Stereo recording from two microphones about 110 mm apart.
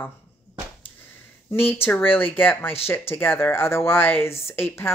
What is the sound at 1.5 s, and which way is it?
Speech, 20° left (ahead or behind).